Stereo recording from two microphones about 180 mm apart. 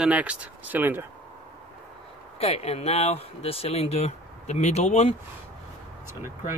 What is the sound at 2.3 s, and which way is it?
Speech, 35° left (ahead or behind).